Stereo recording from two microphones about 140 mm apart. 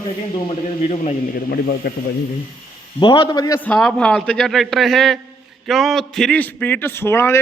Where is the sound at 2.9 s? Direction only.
35° left (ahead or behind).